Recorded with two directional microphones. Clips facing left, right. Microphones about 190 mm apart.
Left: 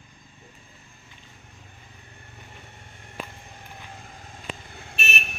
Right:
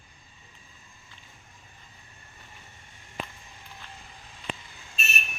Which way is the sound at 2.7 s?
55° left (ahead or behind).